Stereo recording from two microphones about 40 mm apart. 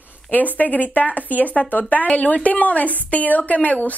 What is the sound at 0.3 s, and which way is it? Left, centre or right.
Speech, left.